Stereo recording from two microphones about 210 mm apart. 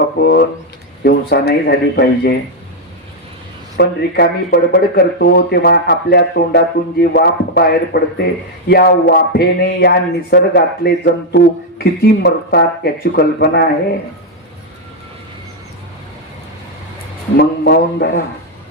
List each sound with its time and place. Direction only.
0.2 s speech: 50° left (ahead or behind)
3.8 s speech: 50° left (ahead or behind)
17.3 s speech: 50° left (ahead or behind)